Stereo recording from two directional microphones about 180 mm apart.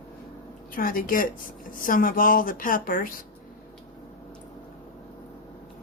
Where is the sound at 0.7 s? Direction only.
50° left (ahead or behind).